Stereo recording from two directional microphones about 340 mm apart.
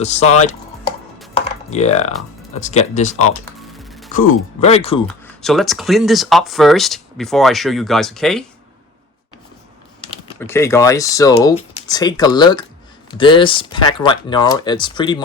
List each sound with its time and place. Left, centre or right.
0.0 s speech: centre
1.3 s computer keyboard: centre
2.6 s speech: left
3.7 s music: centre
4.6 s speech: centre
5.0 s speech: centre
10.0 s speech: centre